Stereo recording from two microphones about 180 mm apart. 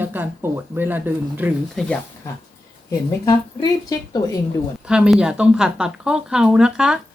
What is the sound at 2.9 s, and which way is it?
A woman's voice, 20° left (ahead or behind).